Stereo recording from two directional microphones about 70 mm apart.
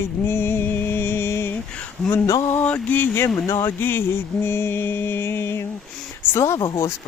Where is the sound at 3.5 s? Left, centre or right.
Left.